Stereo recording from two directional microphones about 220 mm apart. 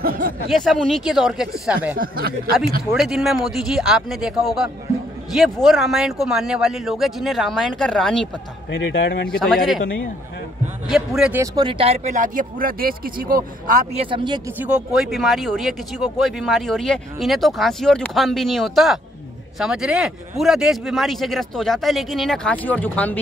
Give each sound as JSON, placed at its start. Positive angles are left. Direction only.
{"t": 0.0, "sound": "speech", "side_deg": -40}
{"t": 0.5, "sound": "speech", "side_deg": 0}
{"t": 2.0, "sound": "speech", "side_deg": -40}
{"t": 2.8, "sound": "speech", "side_deg": 0}
{"t": 8.6, "sound": "a man's voice", "side_deg": 60}
{"t": 9.3, "sound": "speech", "side_deg": 0}
{"t": 10.9, "sound": "speech", "side_deg": -5}
{"t": 14.0, "sound": "speech", "side_deg": -20}
{"t": 14.7, "sound": "speech", "side_deg": 0}